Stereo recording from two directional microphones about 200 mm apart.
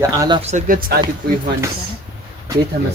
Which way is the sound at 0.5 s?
45° right (ahead or behind).